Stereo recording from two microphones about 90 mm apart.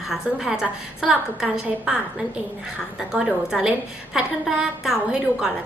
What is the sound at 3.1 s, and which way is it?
Speech, 5° right (ahead or behind).